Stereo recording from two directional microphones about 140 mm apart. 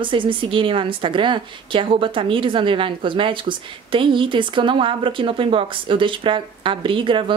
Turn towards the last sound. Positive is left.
turn(degrees=-35)  # may be behind; listen again after turning